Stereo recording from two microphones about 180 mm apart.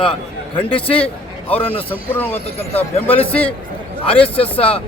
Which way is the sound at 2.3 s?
35° left (ahead or behind).